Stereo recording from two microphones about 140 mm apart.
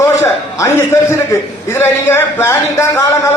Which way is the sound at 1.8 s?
15° left (ahead or behind).